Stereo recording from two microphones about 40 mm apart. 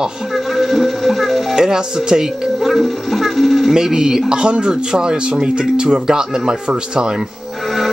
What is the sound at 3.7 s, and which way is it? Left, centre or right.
Speech, centre.